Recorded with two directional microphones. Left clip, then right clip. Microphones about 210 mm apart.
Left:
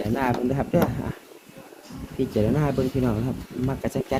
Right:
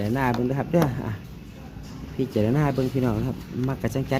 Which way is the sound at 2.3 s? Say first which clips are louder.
Even; 25° right (ahead or behind).